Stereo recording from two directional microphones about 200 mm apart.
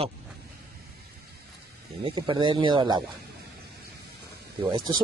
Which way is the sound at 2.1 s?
25° right (ahead or behind).